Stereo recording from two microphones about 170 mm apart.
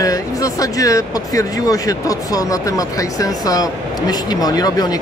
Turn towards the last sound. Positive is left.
turn(degrees=20)  # may be behind; listen again after turning